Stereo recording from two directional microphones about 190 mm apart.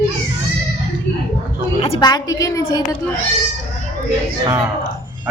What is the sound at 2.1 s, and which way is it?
Speech, 20° left (ahead or behind).